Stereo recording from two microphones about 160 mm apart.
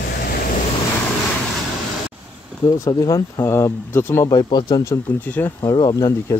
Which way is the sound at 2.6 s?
20° left (ahead or behind).